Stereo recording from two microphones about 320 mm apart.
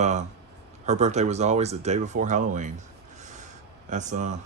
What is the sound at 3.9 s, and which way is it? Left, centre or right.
Speech, right.